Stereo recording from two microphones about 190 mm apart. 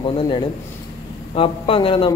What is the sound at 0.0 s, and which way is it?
A man's voice, 25° left (ahead or behind).